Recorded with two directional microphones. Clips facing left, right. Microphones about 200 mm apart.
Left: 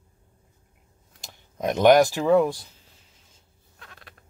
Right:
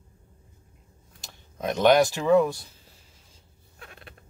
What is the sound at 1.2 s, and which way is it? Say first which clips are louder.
Speech: left 3 dB; 15° left (ahead or behind).